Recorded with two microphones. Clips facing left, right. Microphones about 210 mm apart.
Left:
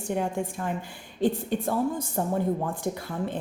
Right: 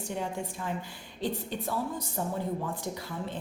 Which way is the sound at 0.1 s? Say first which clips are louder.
Left 7 dB; 55° left (ahead or behind).